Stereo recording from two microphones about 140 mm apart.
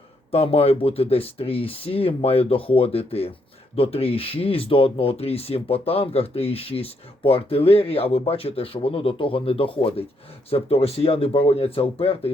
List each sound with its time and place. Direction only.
0.3 s speech: 45° left (ahead or behind)